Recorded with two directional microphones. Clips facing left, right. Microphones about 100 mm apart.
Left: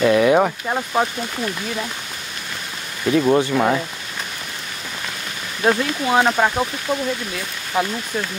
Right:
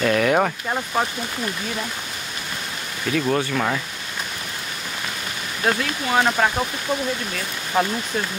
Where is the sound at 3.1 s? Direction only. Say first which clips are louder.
Left 6 dB; 20° left (ahead or behind).